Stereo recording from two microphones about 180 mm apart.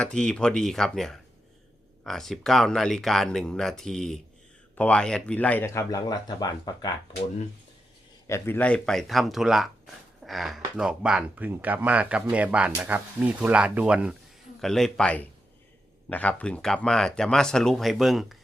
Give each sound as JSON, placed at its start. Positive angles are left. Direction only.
{"t": 0.0, "sound": "speech", "side_deg": 5}
{"t": 8.3, "sound": "speech", "side_deg": 10}